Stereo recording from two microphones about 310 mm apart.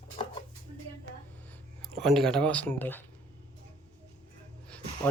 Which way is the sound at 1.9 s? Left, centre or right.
Centre.